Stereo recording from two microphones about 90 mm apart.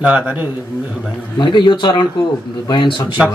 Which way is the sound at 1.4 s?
60° left (ahead or behind).